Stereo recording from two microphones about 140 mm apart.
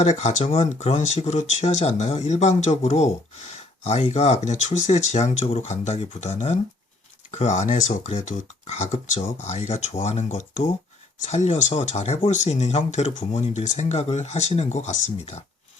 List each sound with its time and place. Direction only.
0.0 s speech: 55° left (ahead or behind)